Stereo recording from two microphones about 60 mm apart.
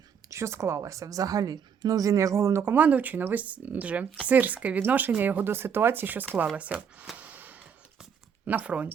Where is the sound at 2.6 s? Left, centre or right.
Right.